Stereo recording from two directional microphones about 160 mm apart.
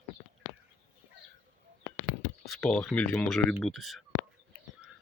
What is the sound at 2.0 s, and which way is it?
Speech, 5° left (ahead or behind).